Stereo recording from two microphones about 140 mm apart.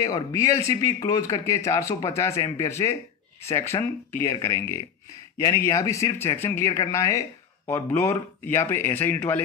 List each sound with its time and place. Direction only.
0.0 s speech: 25° left (ahead or behind)